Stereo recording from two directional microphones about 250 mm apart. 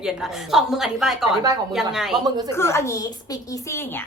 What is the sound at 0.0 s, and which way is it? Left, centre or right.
A woman's voice, centre.